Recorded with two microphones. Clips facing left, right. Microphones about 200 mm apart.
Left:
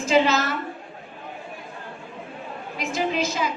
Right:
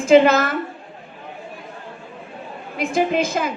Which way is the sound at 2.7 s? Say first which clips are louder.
Right 6 dB; 55° right (ahead or behind).